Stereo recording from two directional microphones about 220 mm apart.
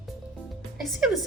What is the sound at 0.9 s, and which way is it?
Speech, centre (ahead or behind).